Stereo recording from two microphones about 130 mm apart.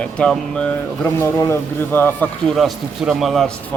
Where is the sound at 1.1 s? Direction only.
20° left (ahead or behind).